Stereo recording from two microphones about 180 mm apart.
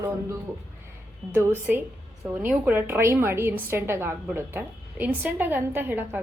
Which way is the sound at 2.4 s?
10° right (ahead or behind).